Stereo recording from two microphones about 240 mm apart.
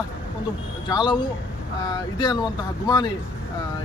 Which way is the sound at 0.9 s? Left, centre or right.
Centre.